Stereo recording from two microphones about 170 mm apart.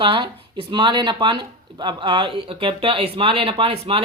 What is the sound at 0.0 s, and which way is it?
A man's voice, 30° right (ahead or behind).